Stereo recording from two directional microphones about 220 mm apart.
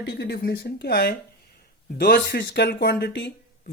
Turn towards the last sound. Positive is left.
turn(degrees=50)  # may be behind; listen again after turning